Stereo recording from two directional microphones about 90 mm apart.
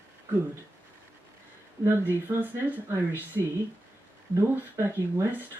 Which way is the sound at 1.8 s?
25° right (ahead or behind).